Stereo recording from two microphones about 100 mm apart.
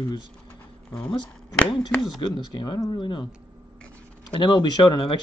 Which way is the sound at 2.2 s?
50° left (ahead or behind).